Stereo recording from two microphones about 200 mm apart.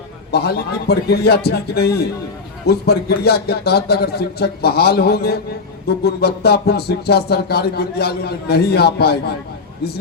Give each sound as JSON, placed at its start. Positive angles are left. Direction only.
{"t": 0.3, "sound": "speech", "side_deg": 55}